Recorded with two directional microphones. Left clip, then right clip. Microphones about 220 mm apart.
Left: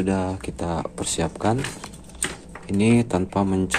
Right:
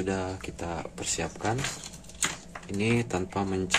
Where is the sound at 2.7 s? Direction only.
15° left (ahead or behind).